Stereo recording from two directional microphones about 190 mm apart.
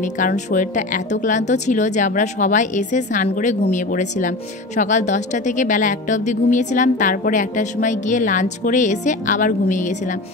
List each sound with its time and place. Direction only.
0.0 s a woman's voice: 40° left (ahead or behind)